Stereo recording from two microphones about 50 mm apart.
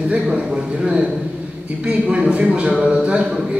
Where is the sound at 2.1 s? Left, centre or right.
Right.